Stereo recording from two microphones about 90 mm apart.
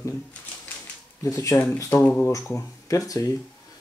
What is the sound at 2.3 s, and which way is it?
Speech, 35° left (ahead or behind).